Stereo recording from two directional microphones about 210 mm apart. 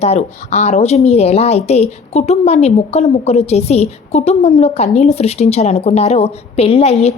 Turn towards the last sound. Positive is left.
turn(degrees=30)  # may be behind; listen again after turning